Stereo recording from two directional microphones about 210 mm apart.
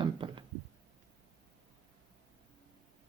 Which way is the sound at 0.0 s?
25° right (ahead or behind).